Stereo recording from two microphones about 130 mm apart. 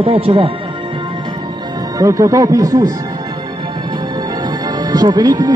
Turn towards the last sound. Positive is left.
turn(degrees=-35)  # may be behind; listen again after turning